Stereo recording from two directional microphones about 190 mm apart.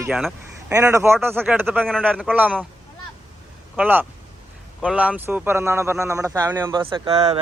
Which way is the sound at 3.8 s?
10° right (ahead or behind).